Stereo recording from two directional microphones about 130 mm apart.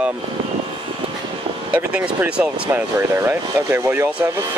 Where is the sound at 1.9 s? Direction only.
10° right (ahead or behind).